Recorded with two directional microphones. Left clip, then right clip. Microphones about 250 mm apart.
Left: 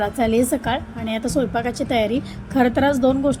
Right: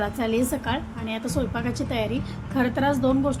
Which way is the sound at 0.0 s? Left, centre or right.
Centre.